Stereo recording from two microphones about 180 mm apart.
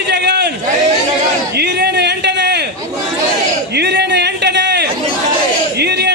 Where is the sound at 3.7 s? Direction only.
70° right (ahead or behind).